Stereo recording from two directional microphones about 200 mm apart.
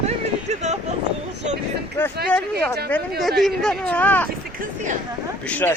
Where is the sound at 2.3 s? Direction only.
5° left (ahead or behind).